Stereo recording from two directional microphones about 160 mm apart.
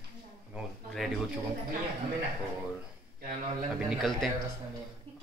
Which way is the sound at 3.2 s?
60° right (ahead or behind).